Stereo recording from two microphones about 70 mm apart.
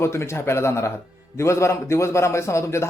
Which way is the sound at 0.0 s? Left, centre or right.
Left.